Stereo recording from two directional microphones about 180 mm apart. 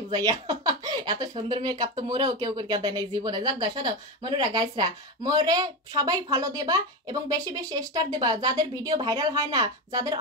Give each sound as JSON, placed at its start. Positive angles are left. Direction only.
{"t": 0.1, "sound": "speech", "side_deg": -20}